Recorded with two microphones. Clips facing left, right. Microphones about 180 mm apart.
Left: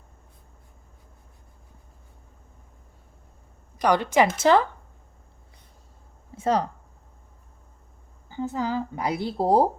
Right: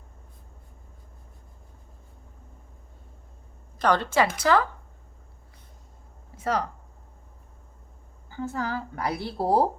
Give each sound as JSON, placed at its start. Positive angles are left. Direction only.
{"t": 3.8, "sound": "a woman's voice", "side_deg": 15}
{"t": 6.3, "sound": "speech", "side_deg": 25}
{"t": 8.3, "sound": "a woman's voice", "side_deg": 20}